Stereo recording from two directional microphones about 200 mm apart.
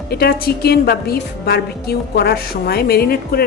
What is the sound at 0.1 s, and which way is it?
A woman's voice, 50° left (ahead or behind).